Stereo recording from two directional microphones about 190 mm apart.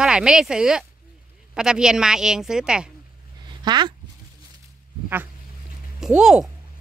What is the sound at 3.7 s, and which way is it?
Speech, 25° right (ahead or behind).